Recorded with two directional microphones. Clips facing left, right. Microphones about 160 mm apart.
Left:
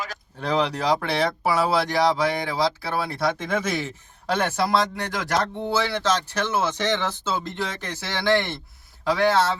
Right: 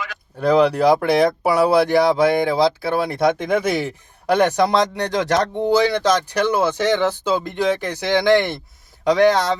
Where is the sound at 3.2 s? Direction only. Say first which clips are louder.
Right 7 dB; 20° right (ahead or behind).